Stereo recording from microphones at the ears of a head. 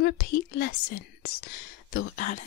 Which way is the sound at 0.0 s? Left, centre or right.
Left.